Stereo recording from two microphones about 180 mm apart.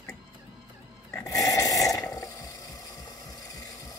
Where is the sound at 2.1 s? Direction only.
20° left (ahead or behind).